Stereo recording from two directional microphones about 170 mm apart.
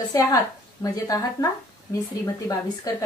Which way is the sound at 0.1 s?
20° left (ahead or behind).